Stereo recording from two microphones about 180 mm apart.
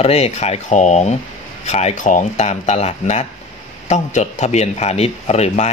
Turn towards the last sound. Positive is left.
turn(degrees=40)  # may be behind; listen again after turning